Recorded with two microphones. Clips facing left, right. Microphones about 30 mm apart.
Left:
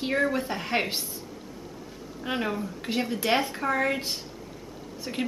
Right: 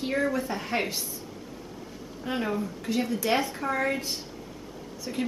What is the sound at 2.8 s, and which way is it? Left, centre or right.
A woman's voice, left.